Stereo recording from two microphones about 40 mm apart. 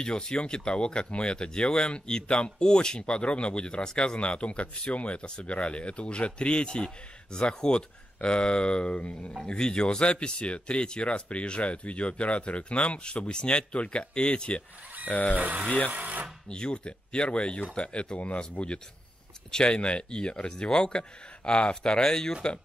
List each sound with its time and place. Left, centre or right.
0.0 s speech: centre; by 9.3 s left
9.5 s speech: left
15.0 s speech: left
15.3 s speech: right
16.4 s speech: left